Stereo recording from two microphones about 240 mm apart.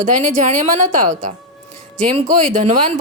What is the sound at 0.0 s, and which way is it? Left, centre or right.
A woman's voice, right.